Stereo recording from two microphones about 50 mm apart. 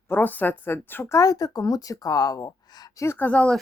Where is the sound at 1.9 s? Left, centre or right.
Left.